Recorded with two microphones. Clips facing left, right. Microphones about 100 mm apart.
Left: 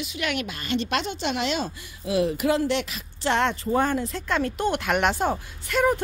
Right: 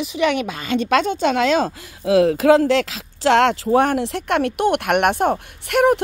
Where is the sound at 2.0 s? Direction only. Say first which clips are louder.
Right 9 dB; 90° right.